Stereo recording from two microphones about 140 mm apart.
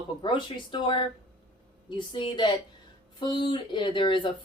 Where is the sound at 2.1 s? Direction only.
35° left (ahead or behind).